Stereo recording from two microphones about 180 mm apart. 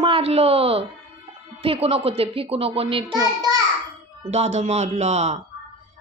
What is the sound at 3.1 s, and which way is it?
Speech, 20° right (ahead or behind).